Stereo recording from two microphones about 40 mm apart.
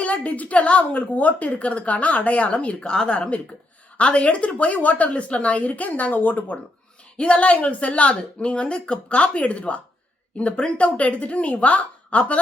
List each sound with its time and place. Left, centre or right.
0.0 s a woman's voice: left
7.2 s a woman's voice: left